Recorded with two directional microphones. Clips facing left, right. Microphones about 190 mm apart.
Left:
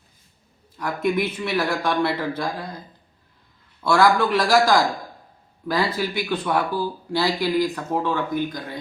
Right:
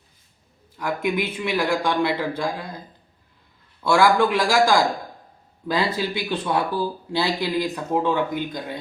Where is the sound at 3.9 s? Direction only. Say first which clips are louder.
Even; 15° right (ahead or behind).